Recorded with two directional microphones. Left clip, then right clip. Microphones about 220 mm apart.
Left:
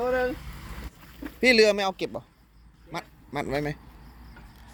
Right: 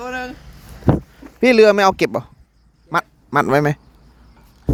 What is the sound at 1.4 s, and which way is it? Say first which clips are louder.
A man's voice: right 9 dB; 30° right (ahead or behind).